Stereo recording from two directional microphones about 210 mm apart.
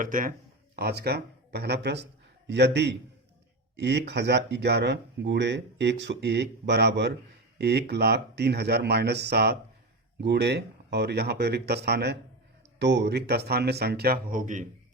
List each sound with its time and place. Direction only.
0.0 s a man's voice: 40° right (ahead or behind)